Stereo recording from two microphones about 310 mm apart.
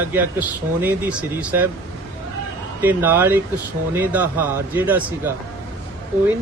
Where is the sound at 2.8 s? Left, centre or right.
Centre.